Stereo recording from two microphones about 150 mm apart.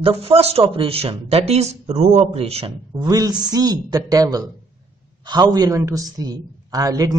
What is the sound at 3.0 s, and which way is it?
A man's voice, 25° right (ahead or behind).